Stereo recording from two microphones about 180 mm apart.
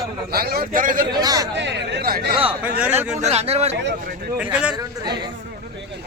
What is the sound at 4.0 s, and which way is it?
Speech, 55° right (ahead or behind).